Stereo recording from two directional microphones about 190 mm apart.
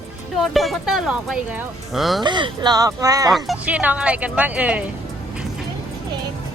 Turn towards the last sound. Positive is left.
turn(degrees=-5)  # may be behind; listen again after turning